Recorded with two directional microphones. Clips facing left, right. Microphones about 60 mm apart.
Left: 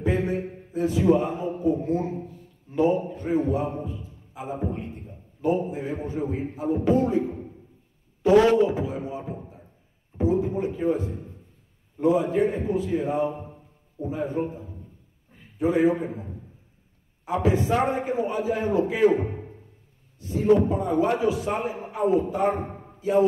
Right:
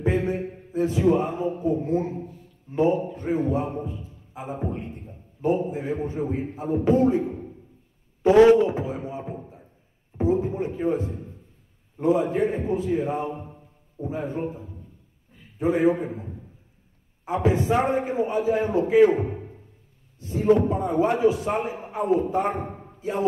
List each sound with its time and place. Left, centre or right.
0.0 s a man's voice: right
4.3 s a sound: right
5.4 s a man's voice: right
8.6 s a man's voice: right
15.6 s a man's voice: right
17.2 s a man's voice: right
17.8 s a man's voice: right